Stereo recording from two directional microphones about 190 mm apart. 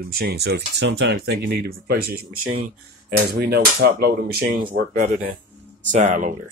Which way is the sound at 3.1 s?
55° right (ahead or behind).